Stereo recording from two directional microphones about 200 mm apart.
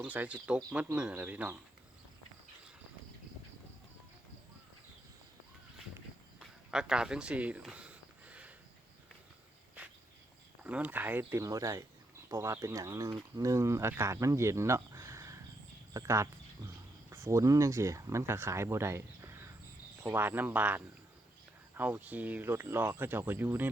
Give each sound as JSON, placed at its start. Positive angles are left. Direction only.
{"t": 0.0, "sound": "speech", "side_deg": -10}
{"t": 6.4, "sound": "a sound", "side_deg": -5}
{"t": 10.6, "sound": "speech", "side_deg": -5}